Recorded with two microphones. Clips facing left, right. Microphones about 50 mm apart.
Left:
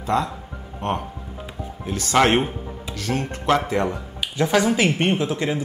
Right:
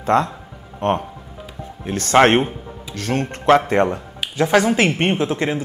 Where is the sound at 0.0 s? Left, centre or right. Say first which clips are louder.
Right 5 dB; right.